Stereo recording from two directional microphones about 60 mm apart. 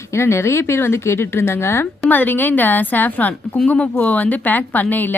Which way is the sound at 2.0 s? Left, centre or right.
Left.